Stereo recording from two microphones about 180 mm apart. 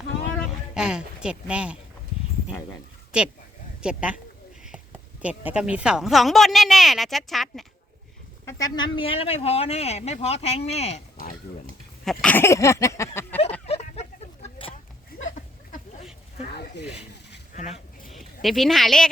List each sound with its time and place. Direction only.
0.7 s speech: 5° right (ahead or behind)
3.1 s speech: 5° right (ahead or behind)
5.2 s speech: 10° right (ahead or behind)
8.4 s speech: 20° left (ahead or behind); by 11.0 s 35° left (ahead or behind)
12.0 s a sound: 10° left (ahead or behind)
13.7 s a sound: 35° left (ahead or behind)
16.5 s snake: 60° left (ahead or behind)
17.5 s a sound: 45° left (ahead or behind)
18.1 s speech: centre (ahead or behind)